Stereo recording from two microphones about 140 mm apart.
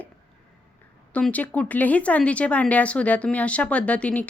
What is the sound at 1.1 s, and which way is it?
Speech, 10° left (ahead or behind).